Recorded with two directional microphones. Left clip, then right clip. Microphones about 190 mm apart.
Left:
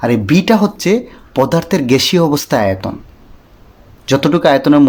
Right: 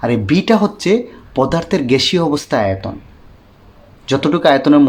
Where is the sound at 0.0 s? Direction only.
20° left (ahead or behind).